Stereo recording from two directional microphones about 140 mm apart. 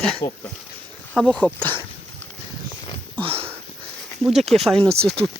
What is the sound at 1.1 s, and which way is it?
Speech, 5° left (ahead or behind).